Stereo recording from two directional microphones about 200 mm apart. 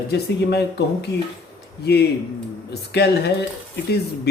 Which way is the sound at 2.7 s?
55° left (ahead or behind).